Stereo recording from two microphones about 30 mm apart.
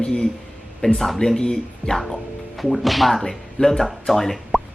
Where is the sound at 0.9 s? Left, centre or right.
Centre.